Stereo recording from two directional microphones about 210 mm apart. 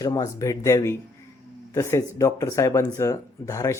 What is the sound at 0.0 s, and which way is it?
Speech, 15° left (ahead or behind).